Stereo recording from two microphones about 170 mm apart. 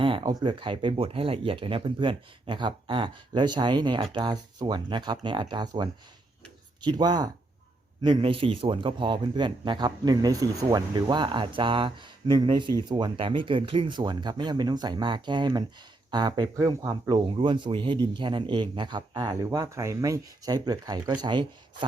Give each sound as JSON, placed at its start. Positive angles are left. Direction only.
{"t": 0.0, "sound": "speech", "side_deg": -30}